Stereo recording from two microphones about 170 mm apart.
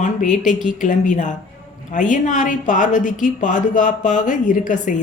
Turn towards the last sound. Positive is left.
turn(degrees=50)  # may be behind; listen again after turning